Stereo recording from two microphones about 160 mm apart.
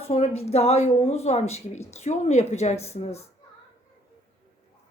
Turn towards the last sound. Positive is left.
turn(degrees=40)  # may be behind; listen again after turning